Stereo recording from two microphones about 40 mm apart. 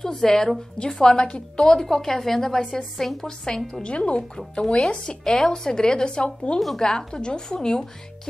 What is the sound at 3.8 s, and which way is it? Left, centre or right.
A woman's voice, left.